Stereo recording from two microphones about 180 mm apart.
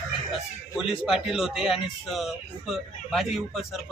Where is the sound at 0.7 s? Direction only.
Centre (ahead or behind).